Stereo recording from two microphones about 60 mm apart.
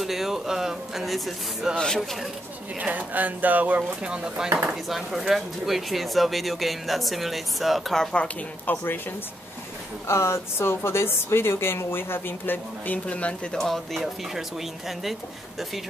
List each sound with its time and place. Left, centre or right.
0.0 s speech: centre
2.8 s speech: right
4.0 s speech: centre
4.8 s speech: centre
8.0 s speech: centre
8.6 s speech: left
10.0 s speech: left; by 13.6 s centre
13.6 s speech: centre